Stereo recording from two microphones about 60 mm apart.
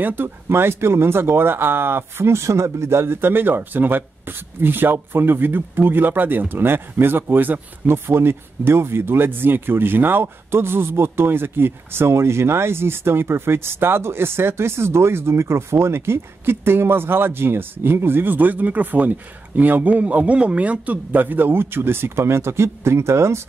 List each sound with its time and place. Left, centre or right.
0.0 s speech: right
7.9 s speech: right